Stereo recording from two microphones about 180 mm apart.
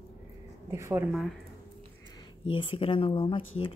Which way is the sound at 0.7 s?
15° right (ahead or behind).